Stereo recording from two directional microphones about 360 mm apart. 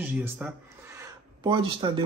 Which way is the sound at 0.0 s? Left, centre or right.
Centre.